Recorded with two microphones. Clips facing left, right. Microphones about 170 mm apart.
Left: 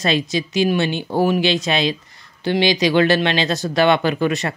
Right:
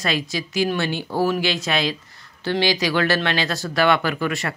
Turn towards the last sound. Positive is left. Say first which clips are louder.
# left 5 dB
turn(degrees=20)  # may be behind; listen again after turning